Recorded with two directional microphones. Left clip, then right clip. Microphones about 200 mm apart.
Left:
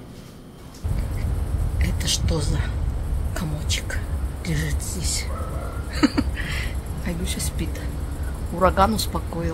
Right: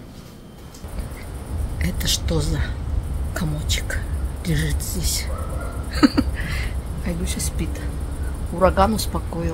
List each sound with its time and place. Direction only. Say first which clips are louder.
1.8 s speech: right 2 dB; 30° right (ahead or behind)
6.3 s crow: even; 10° right (ahead or behind)
8.5 s speech: right 1 dB; 5° right (ahead or behind)